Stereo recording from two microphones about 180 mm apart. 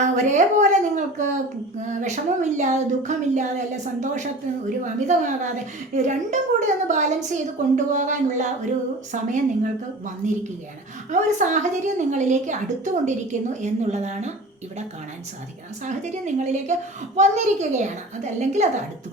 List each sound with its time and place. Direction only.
0.0 s a woman's voice: 40° right (ahead or behind)
11.1 s a woman's voice: 45° right (ahead or behind)
15.8 s a woman's voice: 40° right (ahead or behind)